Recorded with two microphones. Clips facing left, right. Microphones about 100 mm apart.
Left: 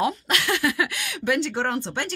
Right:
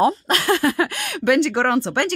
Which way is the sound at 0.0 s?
35° right (ahead or behind).